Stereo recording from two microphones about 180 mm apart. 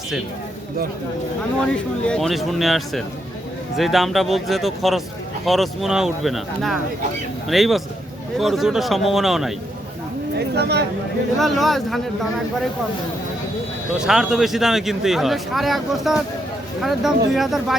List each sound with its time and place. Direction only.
1.6 s speech: 5° left (ahead or behind)
10.3 s speech: 65° right (ahead or behind)
11.3 s speech: centre (ahead or behind)
14.0 s speech: 5° right (ahead or behind)